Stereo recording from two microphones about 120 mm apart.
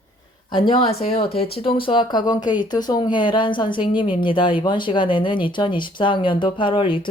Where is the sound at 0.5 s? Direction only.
45° left (ahead or behind).